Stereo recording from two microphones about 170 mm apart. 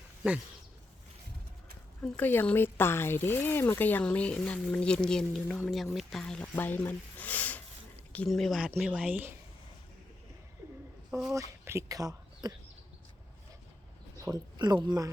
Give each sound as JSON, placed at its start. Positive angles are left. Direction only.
{"t": 2.0, "sound": "speech", "side_deg": 10}
{"t": 11.3, "sound": "speech", "side_deg": -15}
{"t": 14.3, "sound": "a woman's voice", "side_deg": -15}